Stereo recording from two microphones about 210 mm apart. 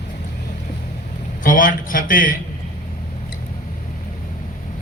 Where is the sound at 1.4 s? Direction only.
40° left (ahead or behind).